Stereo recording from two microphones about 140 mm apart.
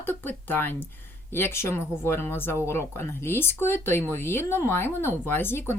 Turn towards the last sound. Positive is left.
turn(degrees=15)  # may be behind; listen again after turning